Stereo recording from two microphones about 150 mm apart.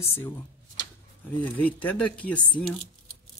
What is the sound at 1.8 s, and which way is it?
Speech, 10° left (ahead or behind).